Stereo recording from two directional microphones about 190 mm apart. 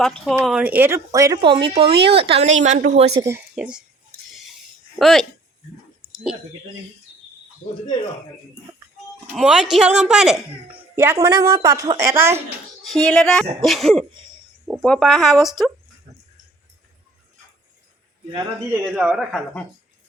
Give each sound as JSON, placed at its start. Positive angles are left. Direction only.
{"t": 0.0, "sound": "speech", "side_deg": 5}
{"t": 3.2, "sound": "speech", "side_deg": -15}
{"t": 4.9, "sound": "speech", "side_deg": 0}
{"t": 9.3, "sound": "speech", "side_deg": -5}
{"t": 13.1, "sound": "speech", "side_deg": 5}
{"t": 18.7, "sound": "speech", "side_deg": -10}